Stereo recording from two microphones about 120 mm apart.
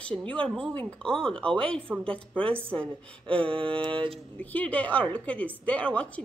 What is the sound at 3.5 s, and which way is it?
Mantra, 45° right (ahead or behind).